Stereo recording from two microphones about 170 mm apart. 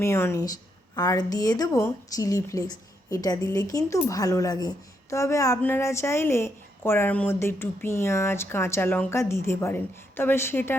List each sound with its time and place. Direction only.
0.0 s a woman's voice: 15° left (ahead or behind)